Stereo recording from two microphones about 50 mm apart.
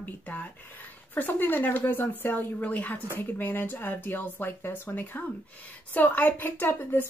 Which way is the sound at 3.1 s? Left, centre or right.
Left.